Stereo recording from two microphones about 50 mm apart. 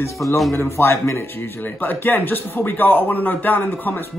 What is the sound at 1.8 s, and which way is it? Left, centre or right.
Speech, left.